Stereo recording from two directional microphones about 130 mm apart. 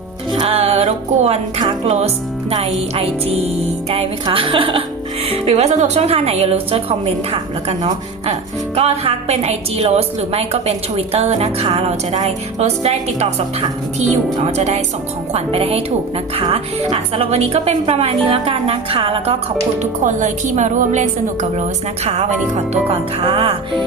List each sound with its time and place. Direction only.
0.3 s speech: 50° right (ahead or behind)
15.3 s speech: 50° right (ahead or behind)
19.8 s speech: 70° right (ahead or behind); by 23.6 s 45° right (ahead or behind)